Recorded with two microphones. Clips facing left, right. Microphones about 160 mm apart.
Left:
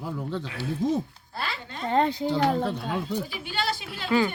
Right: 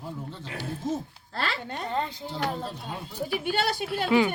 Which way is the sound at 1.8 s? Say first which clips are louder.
Left 9 dB; 90° left.